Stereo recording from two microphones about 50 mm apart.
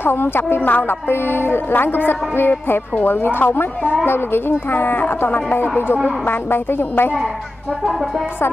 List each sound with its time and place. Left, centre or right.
0.0 s speech: left